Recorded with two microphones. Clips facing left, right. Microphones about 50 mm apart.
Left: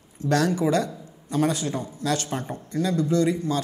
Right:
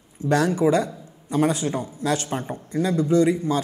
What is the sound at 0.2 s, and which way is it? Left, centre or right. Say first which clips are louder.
A woman's voice: right 2 dB; centre.